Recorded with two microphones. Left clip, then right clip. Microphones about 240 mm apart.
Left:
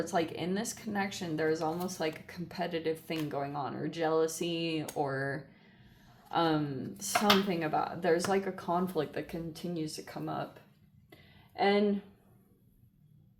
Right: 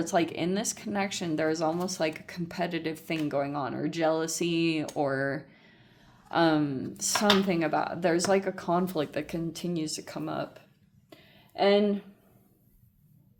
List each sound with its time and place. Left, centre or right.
0.0 s speech: right
11.5 s speech: right